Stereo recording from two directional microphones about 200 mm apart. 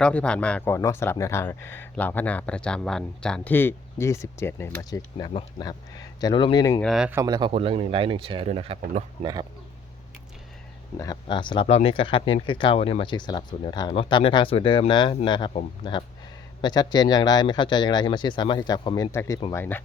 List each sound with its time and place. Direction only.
0.0 s speech: 5° left (ahead or behind)
6.8 s speech: 5° right (ahead or behind)
7.2 s speech: 20° right (ahead or behind)
10.9 s speech: 20° left (ahead or behind)
19.5 s speech: 10° left (ahead or behind)